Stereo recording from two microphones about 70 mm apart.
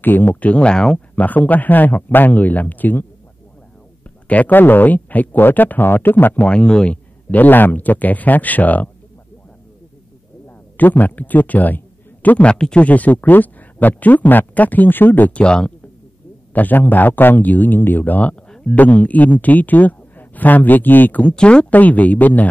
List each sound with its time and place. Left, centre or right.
0.0 s speech: left; by 1.0 s centre
1.1 s speech: left
4.3 s speech: left
6.4 s speech: centre
10.8 s speech: left
16.5 s speech: left